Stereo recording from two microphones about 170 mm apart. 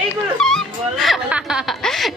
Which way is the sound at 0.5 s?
Centre (ahead or behind).